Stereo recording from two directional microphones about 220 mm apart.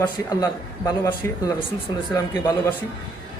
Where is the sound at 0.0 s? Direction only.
15° left (ahead or behind).